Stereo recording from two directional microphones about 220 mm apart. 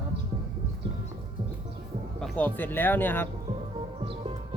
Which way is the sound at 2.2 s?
5° left (ahead or behind).